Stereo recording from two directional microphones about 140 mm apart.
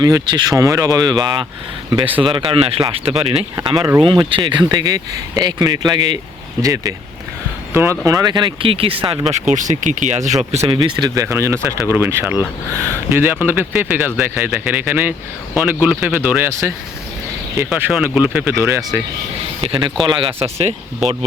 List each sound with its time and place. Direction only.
0.0 s speech: 30° right (ahead or behind)
9.3 s speech: 60° right (ahead or behind)
10.8 s speech: 30° right (ahead or behind)
19.6 s speech: 40° right (ahead or behind)